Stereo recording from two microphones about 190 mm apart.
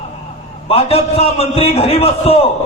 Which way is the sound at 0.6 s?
30° left (ahead or behind).